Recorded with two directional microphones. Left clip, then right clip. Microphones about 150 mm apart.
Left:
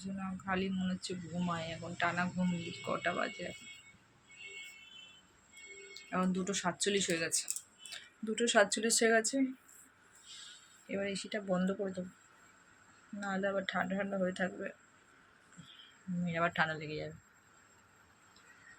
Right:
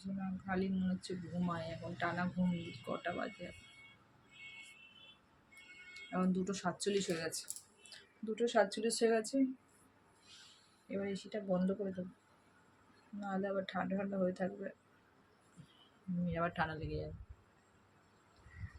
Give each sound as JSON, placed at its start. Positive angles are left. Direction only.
{"t": 0.0, "sound": "speech", "side_deg": 0}
{"t": 5.9, "sound": "speech", "side_deg": 0}
{"t": 7.9, "sound": "speech", "side_deg": 20}
{"t": 10.9, "sound": "speech", "side_deg": 15}
{"t": 13.1, "sound": "speech", "side_deg": 5}
{"t": 16.2, "sound": "speech", "side_deg": 0}